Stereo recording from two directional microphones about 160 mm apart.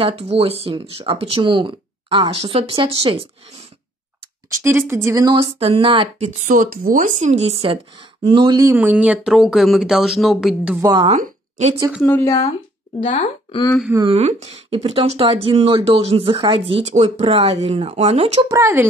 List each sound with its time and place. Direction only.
0.0 s speech: 35° right (ahead or behind)
4.6 s speech: 15° right (ahead or behind)
8.7 s speech: 10° right (ahead or behind)
10.8 s speech: 20° right (ahead or behind)
11.1 s a sound: 45° right (ahead or behind)
12.0 s speech: 15° left (ahead or behind)
14.0 s speech: 40° right (ahead or behind)
18.5 s speech: 20° right (ahead or behind)